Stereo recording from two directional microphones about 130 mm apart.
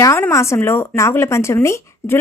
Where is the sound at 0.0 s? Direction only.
20° left (ahead or behind).